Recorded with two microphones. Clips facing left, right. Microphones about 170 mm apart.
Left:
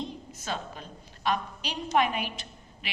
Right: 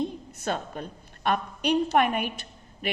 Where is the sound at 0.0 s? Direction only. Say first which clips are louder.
Right 7 dB; 55° right (ahead or behind).